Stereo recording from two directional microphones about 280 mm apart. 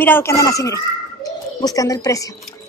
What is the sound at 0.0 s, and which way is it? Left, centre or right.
Speech, centre.